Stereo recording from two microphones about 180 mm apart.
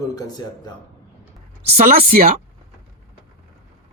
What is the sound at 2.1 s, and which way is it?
Speech, 55° right (ahead or behind).